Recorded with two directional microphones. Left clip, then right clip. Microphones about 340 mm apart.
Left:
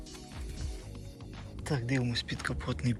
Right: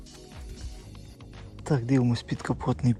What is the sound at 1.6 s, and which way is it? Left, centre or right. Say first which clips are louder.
Speech: right 7 dB; right.